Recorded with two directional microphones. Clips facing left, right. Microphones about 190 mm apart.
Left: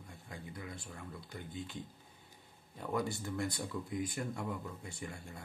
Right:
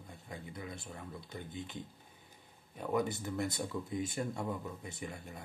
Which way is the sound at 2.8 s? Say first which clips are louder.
Right 3 dB; 20° right (ahead or behind).